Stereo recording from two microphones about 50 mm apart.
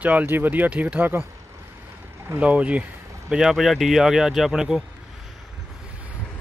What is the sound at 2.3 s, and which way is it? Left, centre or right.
Speech, right.